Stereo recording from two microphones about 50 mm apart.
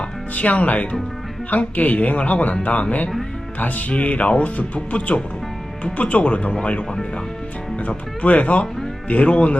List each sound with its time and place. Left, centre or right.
0.3 s speech: left
3.6 s speech: left